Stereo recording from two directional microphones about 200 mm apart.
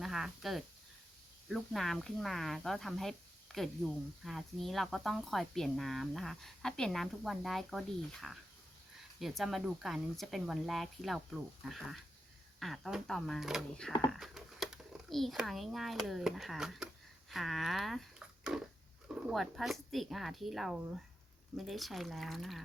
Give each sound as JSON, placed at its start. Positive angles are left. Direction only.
{"t": 0.0, "sound": "a child's voice", "side_deg": 0}